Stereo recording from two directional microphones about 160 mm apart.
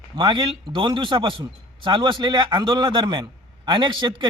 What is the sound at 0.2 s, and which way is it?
A man's voice, 30° right (ahead or behind).